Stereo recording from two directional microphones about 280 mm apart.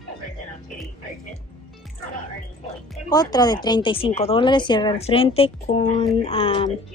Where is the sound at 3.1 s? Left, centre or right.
Centre.